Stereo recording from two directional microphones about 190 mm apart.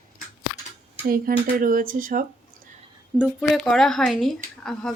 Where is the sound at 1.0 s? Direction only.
50° right (ahead or behind).